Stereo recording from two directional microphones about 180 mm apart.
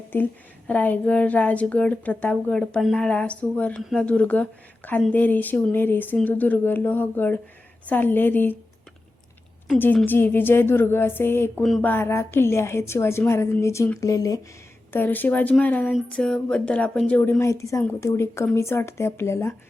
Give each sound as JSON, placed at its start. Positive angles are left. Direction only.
{"t": 0.7, "sound": "a woman's voice", "side_deg": 10}
{"t": 9.7, "sound": "a woman's voice", "side_deg": 10}